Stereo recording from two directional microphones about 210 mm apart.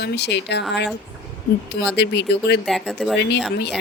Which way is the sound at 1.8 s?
55° left (ahead or behind).